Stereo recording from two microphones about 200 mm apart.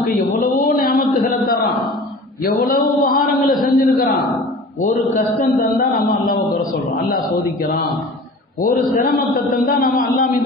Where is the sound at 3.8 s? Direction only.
50° left (ahead or behind).